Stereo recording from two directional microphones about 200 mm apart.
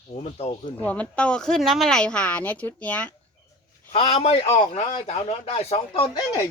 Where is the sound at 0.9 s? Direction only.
5° left (ahead or behind).